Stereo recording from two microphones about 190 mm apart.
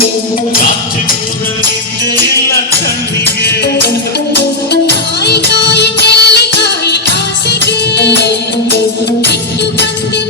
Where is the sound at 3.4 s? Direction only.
60° left (ahead or behind).